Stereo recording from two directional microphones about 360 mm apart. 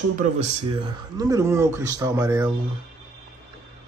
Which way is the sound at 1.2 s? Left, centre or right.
Centre.